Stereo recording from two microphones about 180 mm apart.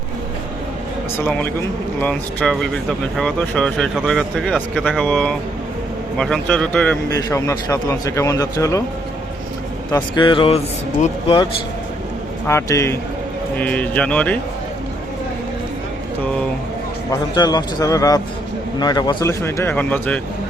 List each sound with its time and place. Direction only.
1.2 s a man's voice: 10° left (ahead or behind)
9.9 s a man's voice: 25° left (ahead or behind)
12.5 s a man's voice: 15° left (ahead or behind)
17.1 s a man's voice: 20° left (ahead or behind)